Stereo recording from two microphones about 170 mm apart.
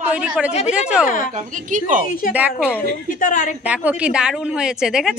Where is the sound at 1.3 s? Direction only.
50° right (ahead or behind).